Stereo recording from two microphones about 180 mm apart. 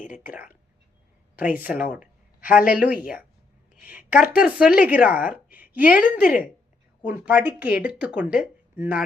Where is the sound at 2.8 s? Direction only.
5° right (ahead or behind).